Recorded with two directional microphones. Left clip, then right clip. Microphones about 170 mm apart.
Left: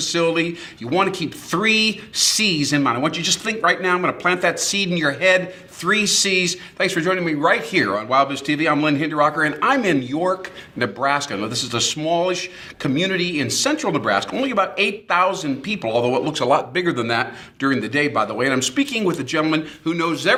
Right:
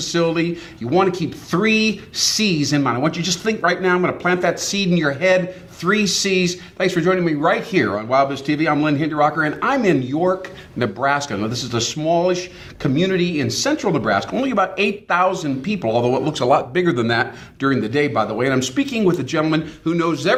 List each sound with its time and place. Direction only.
0.1 s speech: 30° left (ahead or behind)